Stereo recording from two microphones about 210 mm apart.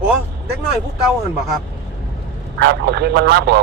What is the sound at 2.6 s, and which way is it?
Speech, 50° right (ahead or behind).